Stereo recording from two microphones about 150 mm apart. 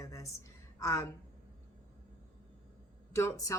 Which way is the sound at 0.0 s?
20° left (ahead or behind).